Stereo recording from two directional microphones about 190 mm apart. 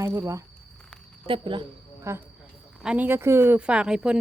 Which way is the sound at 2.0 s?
15° right (ahead or behind).